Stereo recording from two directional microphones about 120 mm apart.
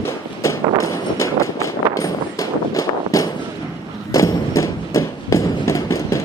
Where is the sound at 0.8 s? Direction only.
25° left (ahead or behind).